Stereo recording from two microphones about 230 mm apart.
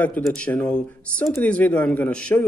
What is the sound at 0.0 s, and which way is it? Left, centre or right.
A man's voice, centre.